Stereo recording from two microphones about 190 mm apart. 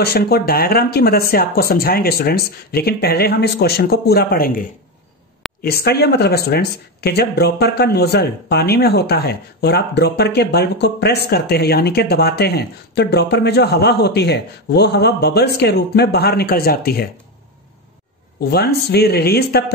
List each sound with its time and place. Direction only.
0.0 s speech: 55° left (ahead or behind)
5.6 s speech: 55° left (ahead or behind)
18.5 s speech: 55° left (ahead or behind)